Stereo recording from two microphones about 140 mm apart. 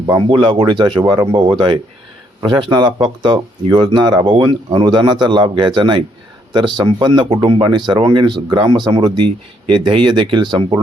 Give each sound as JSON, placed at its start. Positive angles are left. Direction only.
{"t": 0.0, "sound": "speech", "side_deg": -30}